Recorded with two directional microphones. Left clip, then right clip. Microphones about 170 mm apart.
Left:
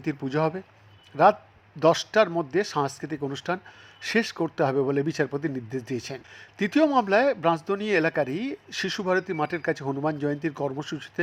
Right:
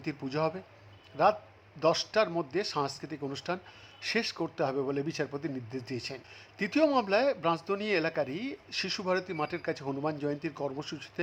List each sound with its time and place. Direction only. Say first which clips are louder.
0.0 s speech: left 6 dB; 15° left (ahead or behind)